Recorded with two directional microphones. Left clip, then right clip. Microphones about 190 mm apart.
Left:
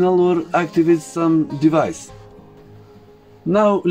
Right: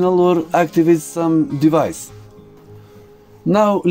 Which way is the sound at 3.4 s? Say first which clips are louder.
Right 1 dB; 50° right (ahead or behind).